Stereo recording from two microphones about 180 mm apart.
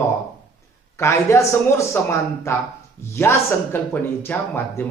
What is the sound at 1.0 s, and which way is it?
Speech, 15° left (ahead or behind).